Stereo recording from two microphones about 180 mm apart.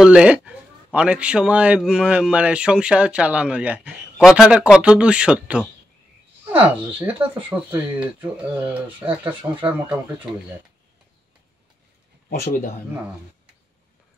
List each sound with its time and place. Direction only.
0.0 s speech: 5° right (ahead or behind)
12.3 s speech: 55° left (ahead or behind)